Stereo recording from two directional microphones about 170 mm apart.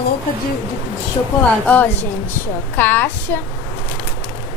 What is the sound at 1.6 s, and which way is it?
A woman's voice, 10° left (ahead or behind).